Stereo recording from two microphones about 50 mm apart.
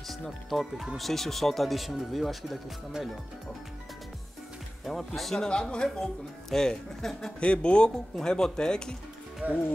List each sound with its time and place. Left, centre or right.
0.1 s speech: centre
4.8 s speech: centre
5.4 s speech: centre
7.3 s speech: left
9.4 s speech: right